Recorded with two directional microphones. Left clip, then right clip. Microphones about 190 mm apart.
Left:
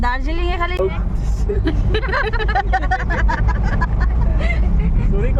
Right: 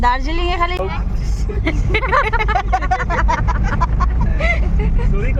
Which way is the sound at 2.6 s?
15° right (ahead or behind).